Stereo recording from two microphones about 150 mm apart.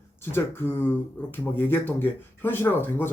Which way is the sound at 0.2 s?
15° left (ahead or behind).